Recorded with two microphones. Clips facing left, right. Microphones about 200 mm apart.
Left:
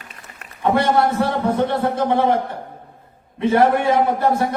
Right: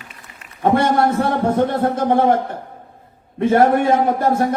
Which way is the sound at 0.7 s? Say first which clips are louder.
Right 1 dB; 45° right (ahead or behind).